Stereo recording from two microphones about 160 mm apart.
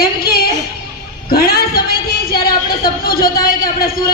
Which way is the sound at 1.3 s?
70° left (ahead or behind).